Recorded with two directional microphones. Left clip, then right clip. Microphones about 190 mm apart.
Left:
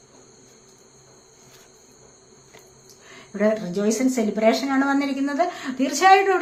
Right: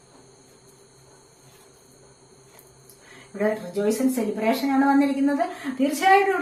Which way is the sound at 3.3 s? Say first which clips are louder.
Left 3 dB; 35° left (ahead or behind).